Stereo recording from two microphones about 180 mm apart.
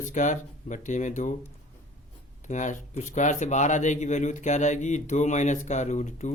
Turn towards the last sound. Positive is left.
turn(degrees=40)  # may be behind; listen again after turning